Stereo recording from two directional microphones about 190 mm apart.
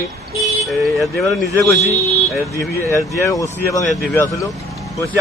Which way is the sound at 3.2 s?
15° left (ahead or behind).